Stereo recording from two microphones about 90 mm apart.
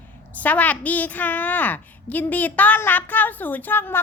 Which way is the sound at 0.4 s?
15° left (ahead or behind).